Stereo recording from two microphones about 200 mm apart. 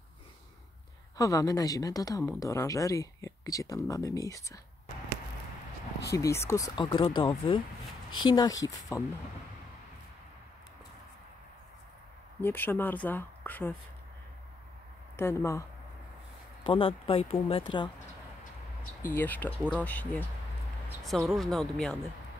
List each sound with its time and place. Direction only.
1.1 s speech: 15° left (ahead or behind)
6.1 s speech: 15° left (ahead or behind)
8.1 s speech: 90° left
8.9 s speech: 15° left (ahead or behind)
12.4 s speech: 10° left (ahead or behind)
15.1 s speech: 15° left (ahead or behind)
16.6 s speech: 25° left (ahead or behind)
19.0 s speech: 10° left (ahead or behind)
21.3 s speech: centre (ahead or behind)